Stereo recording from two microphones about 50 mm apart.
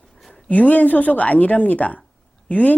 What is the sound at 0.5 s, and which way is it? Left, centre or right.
A woman's voice, left.